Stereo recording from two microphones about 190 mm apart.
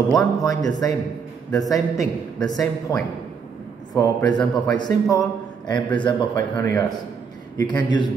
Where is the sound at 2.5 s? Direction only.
20° left (ahead or behind).